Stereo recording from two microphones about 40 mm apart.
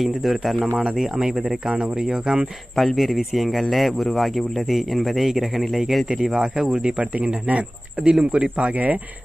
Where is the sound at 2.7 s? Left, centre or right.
Centre.